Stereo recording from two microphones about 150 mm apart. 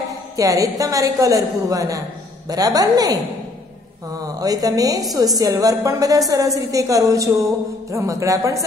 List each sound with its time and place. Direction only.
0.4 s a woman's voice: 20° right (ahead or behind)
4.2 s a woman's voice: 25° right (ahead or behind)